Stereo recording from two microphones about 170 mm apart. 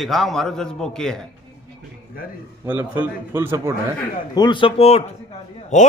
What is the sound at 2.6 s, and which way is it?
A man's voice, 10° right (ahead or behind).